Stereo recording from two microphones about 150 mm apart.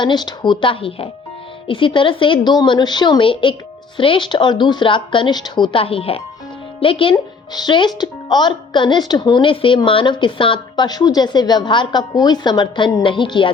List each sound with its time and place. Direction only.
0.0 s speech: 30° left (ahead or behind)